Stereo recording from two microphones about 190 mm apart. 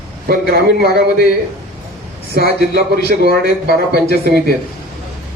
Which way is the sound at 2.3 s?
55° right (ahead or behind).